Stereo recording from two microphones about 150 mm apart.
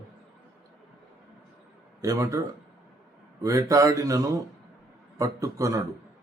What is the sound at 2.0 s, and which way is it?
Speech, 20° right (ahead or behind).